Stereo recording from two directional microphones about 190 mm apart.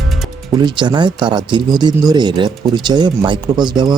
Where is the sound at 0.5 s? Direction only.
25° right (ahead or behind).